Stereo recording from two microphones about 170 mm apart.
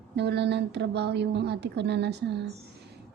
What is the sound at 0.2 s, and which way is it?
A woman's voice, 90° right.